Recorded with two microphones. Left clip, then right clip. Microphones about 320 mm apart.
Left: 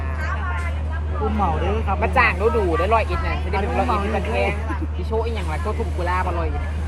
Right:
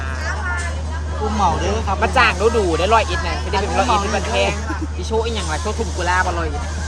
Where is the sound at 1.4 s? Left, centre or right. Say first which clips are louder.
Right 6 dB; right.